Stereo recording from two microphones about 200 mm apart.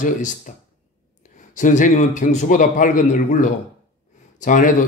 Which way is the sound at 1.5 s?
40° left (ahead or behind).